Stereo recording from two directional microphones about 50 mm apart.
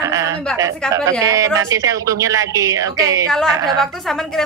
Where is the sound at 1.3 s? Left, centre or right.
Right.